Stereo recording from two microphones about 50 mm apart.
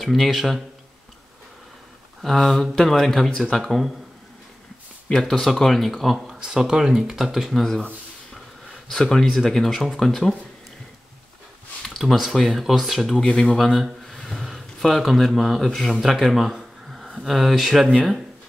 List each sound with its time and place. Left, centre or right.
0.0 s speech: centre
2.2 s speech: centre
5.2 s speech: centre
6.1 s speech: centre
8.8 s speech: centre
11.8 s speech: centre
13.2 s speech: centre
13.6 s speech: centre